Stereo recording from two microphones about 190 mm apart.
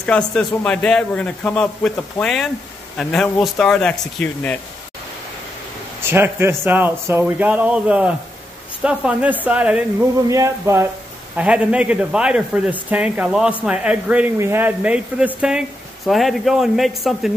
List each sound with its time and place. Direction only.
0.0 s a man's voice: 5° left (ahead or behind)
6.0 s a man's voice: 10° right (ahead or behind)